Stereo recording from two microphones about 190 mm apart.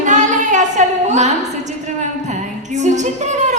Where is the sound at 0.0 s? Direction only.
40° right (ahead or behind).